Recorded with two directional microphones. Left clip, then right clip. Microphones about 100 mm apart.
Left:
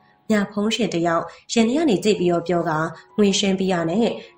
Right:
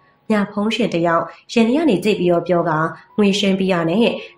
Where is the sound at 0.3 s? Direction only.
35° left (ahead or behind).